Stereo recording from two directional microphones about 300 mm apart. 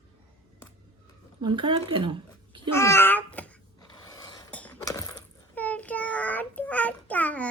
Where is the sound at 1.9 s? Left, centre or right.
Centre.